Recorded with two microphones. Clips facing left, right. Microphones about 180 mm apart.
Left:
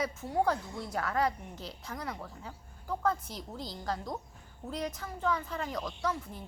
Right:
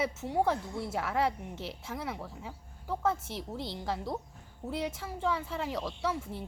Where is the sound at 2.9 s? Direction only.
25° right (ahead or behind).